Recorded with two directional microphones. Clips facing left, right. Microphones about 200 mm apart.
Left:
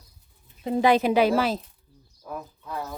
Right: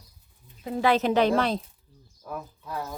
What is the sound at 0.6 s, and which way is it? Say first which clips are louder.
Speech: left 5 dB; 25° left (ahead or behind).